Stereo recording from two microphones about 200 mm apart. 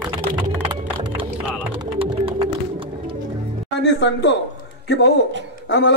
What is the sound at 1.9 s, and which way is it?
Music, 30° right (ahead or behind).